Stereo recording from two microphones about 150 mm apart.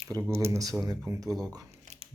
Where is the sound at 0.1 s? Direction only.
15° right (ahead or behind).